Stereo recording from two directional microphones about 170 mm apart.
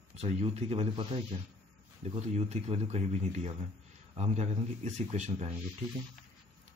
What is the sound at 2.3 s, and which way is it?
A man's voice, 40° right (ahead or behind).